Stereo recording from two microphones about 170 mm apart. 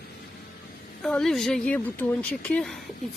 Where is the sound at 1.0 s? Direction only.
5° left (ahead or behind).